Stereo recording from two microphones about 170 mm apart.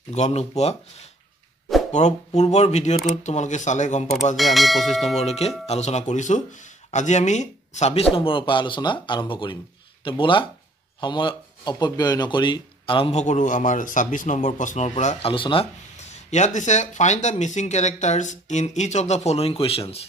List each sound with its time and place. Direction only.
0.1 s speech: 40° left (ahead or behind)
4.4 s church bell: centre (ahead or behind)
5.2 s speech: 40° left (ahead or behind)